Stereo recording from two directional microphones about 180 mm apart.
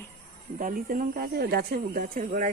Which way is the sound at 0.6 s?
50° right (ahead or behind).